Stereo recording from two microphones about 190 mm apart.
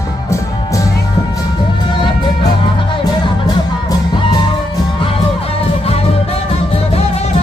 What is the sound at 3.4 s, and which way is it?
Music, 20° left (ahead or behind).